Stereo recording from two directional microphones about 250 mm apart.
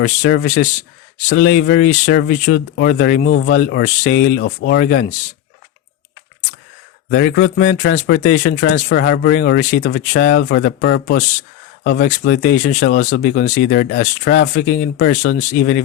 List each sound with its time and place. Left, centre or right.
0.0 s speech: left
3.2 s speech: left
3.5 s speech: left
7.1 s speech: left
8.9 s speech: left
10.6 s speech: left
11.9 s speech: left
15.4 s speech: left